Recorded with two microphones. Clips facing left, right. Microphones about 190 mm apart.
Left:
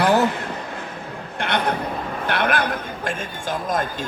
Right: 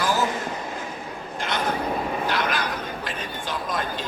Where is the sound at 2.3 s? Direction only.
60° left (ahead or behind).